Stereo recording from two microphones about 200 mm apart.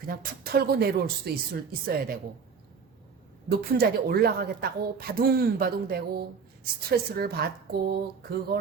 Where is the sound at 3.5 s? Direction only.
50° right (ahead or behind).